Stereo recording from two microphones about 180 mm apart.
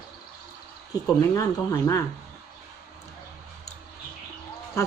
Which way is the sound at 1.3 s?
20° left (ahead or behind).